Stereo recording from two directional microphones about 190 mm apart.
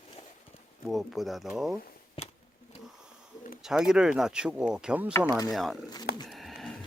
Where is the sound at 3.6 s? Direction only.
5° right (ahead or behind).